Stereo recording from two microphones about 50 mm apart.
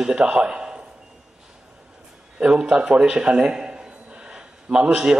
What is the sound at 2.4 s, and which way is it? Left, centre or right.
A man's voice, centre.